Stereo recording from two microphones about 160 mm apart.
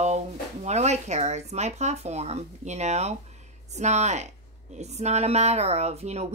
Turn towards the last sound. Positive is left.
turn(degrees=-40)  # may be behind; listen again after turning